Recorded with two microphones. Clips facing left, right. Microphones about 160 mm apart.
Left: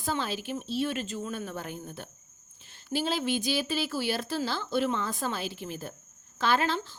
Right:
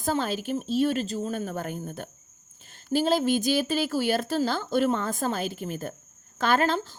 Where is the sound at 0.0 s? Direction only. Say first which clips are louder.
Right 5 dB; 45° right (ahead or behind).